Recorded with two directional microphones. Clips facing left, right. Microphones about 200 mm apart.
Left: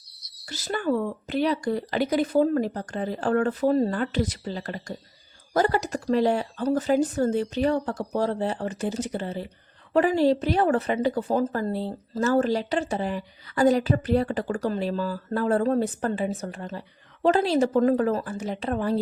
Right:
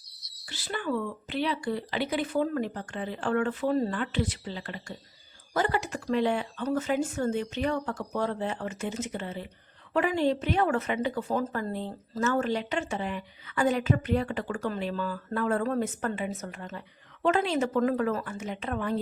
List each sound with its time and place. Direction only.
0.4 s a woman's voice: 45° left (ahead or behind)